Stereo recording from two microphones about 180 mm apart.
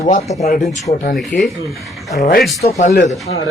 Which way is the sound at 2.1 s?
45° left (ahead or behind).